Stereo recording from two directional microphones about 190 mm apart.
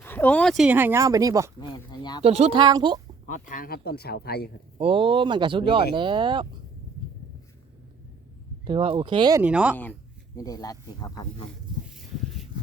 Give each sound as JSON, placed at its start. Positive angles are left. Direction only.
{"t": 0.0, "sound": "speech", "side_deg": 10}
{"t": 1.7, "sound": "speech", "side_deg": 20}
{"t": 2.2, "sound": "speech", "side_deg": -35}
{"t": 3.5, "sound": "speech", "side_deg": 50}
{"t": 4.8, "sound": "speech", "side_deg": -30}
{"t": 8.6, "sound": "speech", "side_deg": -30}
{"t": 9.4, "sound": "speech", "side_deg": -5}
{"t": 10.3, "sound": "speech", "side_deg": 20}